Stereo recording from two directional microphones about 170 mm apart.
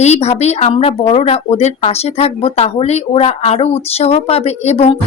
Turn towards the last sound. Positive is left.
turn(degrees=40)  # may be behind; listen again after turning